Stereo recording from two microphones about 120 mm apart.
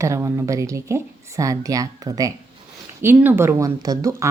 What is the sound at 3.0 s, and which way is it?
Speech, 15° right (ahead or behind).